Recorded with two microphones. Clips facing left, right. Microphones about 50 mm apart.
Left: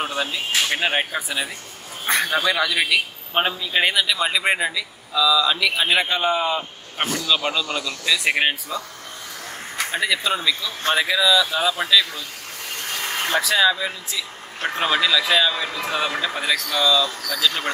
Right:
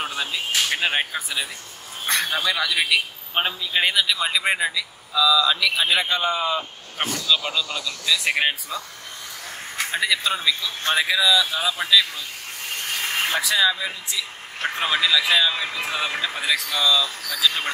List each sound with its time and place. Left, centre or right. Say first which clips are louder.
0.7 s a man's voice: left 1 dB; centre
9.8 s speech: left 1 dB; centre
12.9 s vehicle: right 1 dB; centre
13.3 s speech: left 4 dB; centre